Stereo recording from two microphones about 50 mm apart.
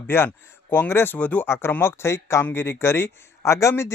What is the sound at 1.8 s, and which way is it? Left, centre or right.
Speech, left.